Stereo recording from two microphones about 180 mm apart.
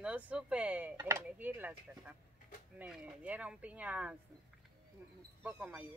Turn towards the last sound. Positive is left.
turn(degrees=-5)  # may be behind; listen again after turning